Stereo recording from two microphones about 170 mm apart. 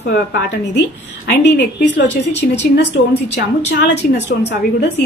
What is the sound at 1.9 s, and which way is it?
A woman's voice, 90° left.